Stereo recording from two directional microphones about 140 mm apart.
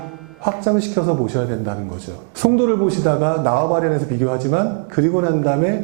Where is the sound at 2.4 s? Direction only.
15° right (ahead or behind).